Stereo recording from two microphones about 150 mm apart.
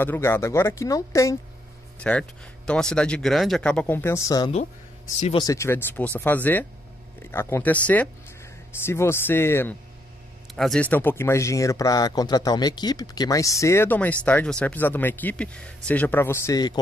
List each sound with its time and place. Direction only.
0.0 s speech: 15° left (ahead or behind)
2.0 s speech: 10° left (ahead or behind)
10.5 s speech: centre (ahead or behind); by 16.8 s 25° left (ahead or behind)